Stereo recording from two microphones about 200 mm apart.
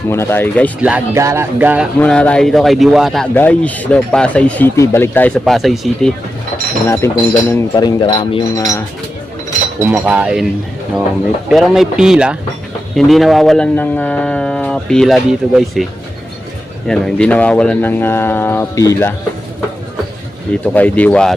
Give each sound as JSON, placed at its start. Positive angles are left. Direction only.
{"t": 0.1, "sound": "speech", "side_deg": 10}
{"t": 0.8, "sound": "speech", "side_deg": -5}
{"t": 2.0, "sound": "speech", "side_deg": 5}
{"t": 6.8, "sound": "speech", "side_deg": 15}
{"t": 9.8, "sound": "speech", "side_deg": -10}
{"t": 11.4, "sound": "speech", "side_deg": 0}
{"t": 20.7, "sound": "speech", "side_deg": 10}